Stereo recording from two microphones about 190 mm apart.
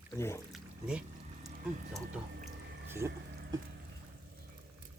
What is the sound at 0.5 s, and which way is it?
Speech, 5° right (ahead or behind).